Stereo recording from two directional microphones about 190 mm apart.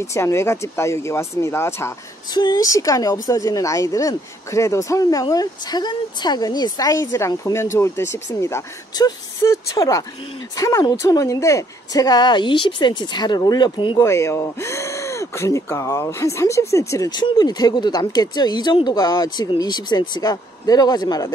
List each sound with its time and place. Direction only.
0.0 s a woman's voice: 15° left (ahead or behind)